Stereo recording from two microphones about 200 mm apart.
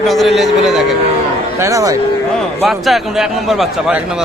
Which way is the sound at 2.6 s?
Centre (ahead or behind).